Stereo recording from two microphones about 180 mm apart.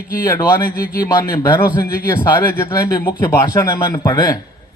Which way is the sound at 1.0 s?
15° left (ahead or behind).